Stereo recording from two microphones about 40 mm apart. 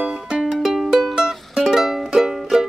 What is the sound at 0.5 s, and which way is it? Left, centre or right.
Music, centre.